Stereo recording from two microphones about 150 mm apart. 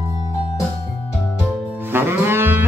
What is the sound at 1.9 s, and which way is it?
Music, 15° right (ahead or behind).